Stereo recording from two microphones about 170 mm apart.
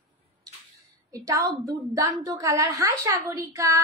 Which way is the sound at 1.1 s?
20° right (ahead or behind).